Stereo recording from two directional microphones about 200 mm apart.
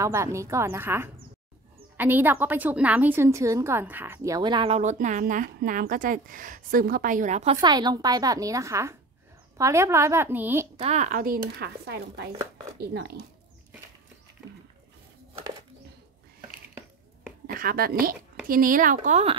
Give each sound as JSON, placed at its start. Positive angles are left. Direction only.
{"t": 0.0, "sound": "a woman's voice", "side_deg": -15}
{"t": 7.6, "sound": "a woman's voice", "side_deg": -20}
{"t": 10.8, "sound": "speech", "side_deg": -35}
{"t": 17.5, "sound": "speech", "side_deg": -45}